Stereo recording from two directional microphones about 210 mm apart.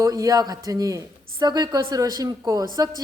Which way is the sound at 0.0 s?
15° right (ahead or behind).